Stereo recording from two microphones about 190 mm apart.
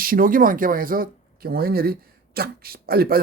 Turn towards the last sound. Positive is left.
turn(degrees=-55)  # may be behind; listen again after turning